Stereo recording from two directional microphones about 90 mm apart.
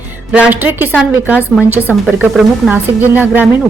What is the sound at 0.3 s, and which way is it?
A woman's voice, 15° right (ahead or behind).